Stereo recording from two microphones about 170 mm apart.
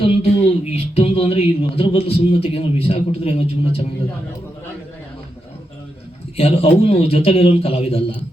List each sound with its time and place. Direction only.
0.0 s speech: 35° left (ahead or behind)
6.3 s speech: 35° left (ahead or behind)